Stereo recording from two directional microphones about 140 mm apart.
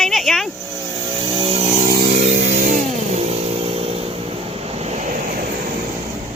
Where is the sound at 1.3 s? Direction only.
40° right (ahead or behind).